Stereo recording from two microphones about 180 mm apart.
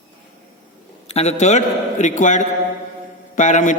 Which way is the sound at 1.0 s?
35° left (ahead or behind).